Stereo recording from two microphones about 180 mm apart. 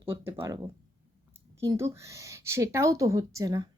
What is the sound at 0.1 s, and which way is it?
A woman's voice, 15° right (ahead or behind).